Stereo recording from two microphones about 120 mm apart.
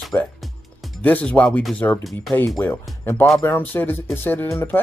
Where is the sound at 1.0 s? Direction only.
15° left (ahead or behind).